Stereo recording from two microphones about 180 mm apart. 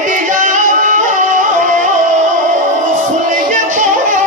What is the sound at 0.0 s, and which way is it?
Music, 45° right (ahead or behind).